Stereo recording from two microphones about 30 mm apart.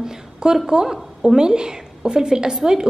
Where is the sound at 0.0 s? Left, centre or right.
Right.